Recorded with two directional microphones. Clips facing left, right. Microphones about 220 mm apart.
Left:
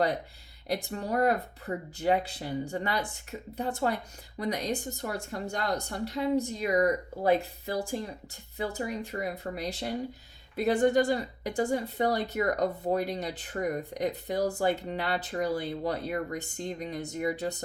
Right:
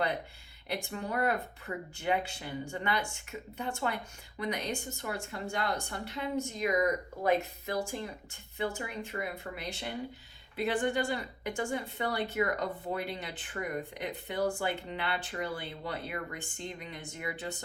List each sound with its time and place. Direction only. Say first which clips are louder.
0.7 s speech: left 4 dB; 40° left (ahead or behind)